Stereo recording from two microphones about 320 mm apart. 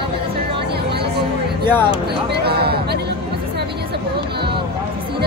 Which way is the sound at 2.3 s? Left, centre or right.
Right.